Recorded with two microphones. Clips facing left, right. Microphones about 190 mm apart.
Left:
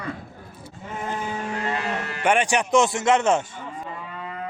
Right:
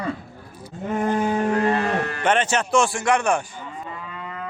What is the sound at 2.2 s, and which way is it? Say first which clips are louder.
Speech: left 2 dB; 10° left (ahead or behind).